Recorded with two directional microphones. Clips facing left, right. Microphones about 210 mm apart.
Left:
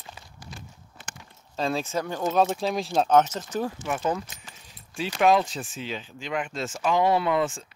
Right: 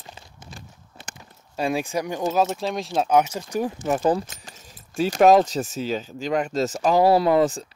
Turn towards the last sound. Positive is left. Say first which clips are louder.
# right 6 dB
turn(degrees=-35)  # may be behind; listen again after turning